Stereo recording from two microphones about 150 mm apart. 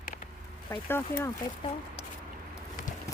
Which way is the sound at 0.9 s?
20° left (ahead or behind).